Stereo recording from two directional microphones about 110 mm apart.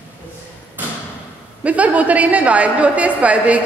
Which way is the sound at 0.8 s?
15° right (ahead or behind).